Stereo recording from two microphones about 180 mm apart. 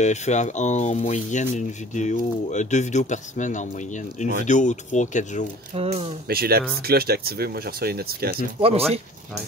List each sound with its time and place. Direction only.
0.0 s speech: 40° left (ahead or behind)
5.8 s speech: 35° right (ahead or behind)
6.2 s speech: 60° right (ahead or behind)
8.5 s speech: 35° right (ahead or behind)